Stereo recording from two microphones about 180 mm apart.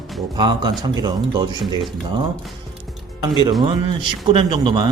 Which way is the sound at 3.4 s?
25° right (ahead or behind).